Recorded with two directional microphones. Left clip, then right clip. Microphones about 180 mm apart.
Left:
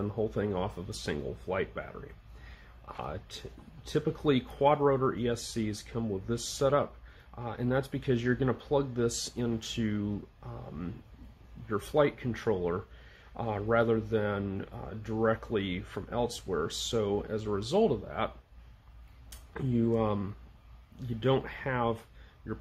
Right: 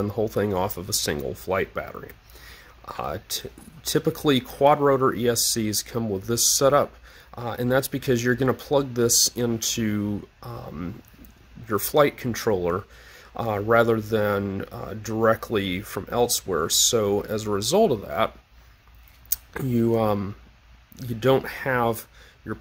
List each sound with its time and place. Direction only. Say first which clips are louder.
0.0 s speech: right 8 dB; 70° right (ahead or behind)